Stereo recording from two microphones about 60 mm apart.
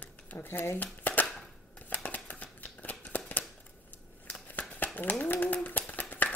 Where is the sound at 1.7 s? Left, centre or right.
Left.